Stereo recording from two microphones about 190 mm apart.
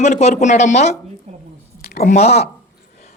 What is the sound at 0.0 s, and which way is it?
Speech, 35° left (ahead or behind).